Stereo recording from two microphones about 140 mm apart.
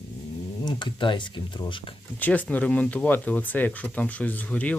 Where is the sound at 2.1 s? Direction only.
10° left (ahead or behind).